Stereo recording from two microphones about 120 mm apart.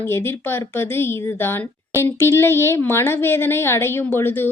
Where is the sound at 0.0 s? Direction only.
20° left (ahead or behind).